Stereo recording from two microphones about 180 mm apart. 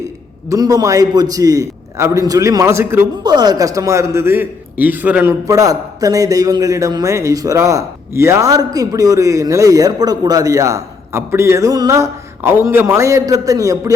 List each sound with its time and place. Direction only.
0.4 s a man's voice: 20° right (ahead or behind)